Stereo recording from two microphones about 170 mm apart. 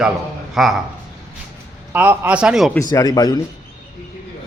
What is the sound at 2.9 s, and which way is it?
Speech, 20° left (ahead or behind).